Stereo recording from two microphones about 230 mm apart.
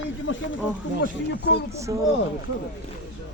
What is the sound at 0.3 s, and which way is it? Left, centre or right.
Speech, left.